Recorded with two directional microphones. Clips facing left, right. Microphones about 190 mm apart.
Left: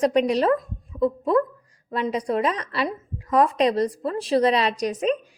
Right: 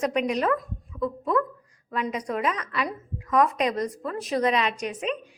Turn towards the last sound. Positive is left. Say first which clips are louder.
# left 6 dB
turn(degrees=40)  # may be behind; listen again after turning